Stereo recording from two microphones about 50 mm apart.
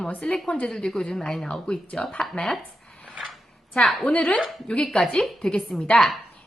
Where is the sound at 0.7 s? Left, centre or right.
Centre.